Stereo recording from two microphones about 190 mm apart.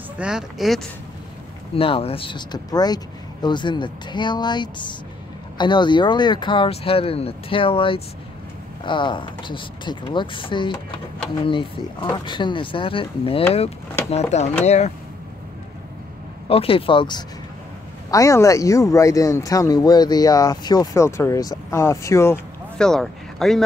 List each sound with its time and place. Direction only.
0.2 s speech: 5° right (ahead or behind)
1.8 s speech: 30° left (ahead or behind)
16.4 s speech: 30° left (ahead or behind); by 22.8 s 15° left (ahead or behind)
22.8 s speech: centre (ahead or behind)